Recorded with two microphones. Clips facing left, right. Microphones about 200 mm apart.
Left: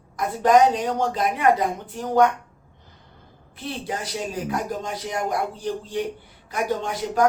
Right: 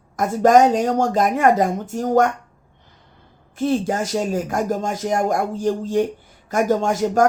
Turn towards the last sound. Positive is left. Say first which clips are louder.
# right 5 dB
turn(degrees=-45)  # may be behind; listen again after turning